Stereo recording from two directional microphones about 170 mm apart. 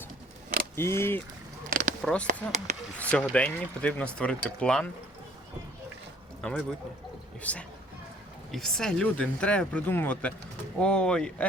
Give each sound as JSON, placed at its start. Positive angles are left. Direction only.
{"t": 0.8, "sound": "speech", "side_deg": 15}
{"t": 1.7, "sound": "a sound", "side_deg": -55}
{"t": 2.0, "sound": "speech", "side_deg": 0}
{"t": 2.2, "sound": "speech", "side_deg": -45}
{"t": 3.0, "sound": "speech", "side_deg": 5}
{"t": 6.4, "sound": "speech", "side_deg": 5}